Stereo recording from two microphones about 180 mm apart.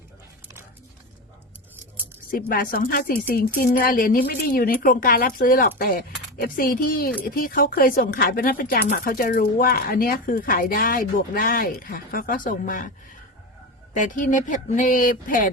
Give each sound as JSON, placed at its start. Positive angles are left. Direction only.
{"t": 2.3, "sound": "speech", "side_deg": 50}